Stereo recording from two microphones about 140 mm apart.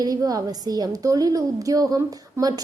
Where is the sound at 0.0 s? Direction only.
25° right (ahead or behind).